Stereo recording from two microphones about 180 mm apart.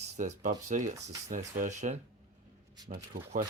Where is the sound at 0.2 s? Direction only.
45° right (ahead or behind).